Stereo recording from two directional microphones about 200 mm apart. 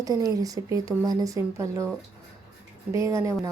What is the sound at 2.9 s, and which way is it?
Speech, 15° right (ahead or behind).